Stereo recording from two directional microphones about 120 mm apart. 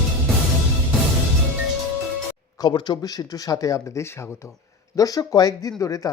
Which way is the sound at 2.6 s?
40° left (ahead or behind).